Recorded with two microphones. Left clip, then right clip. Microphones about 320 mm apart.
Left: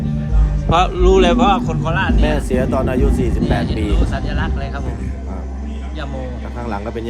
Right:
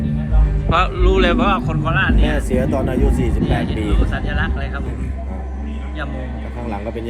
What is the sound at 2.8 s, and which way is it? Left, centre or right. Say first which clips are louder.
Speech: left 2 dB; left.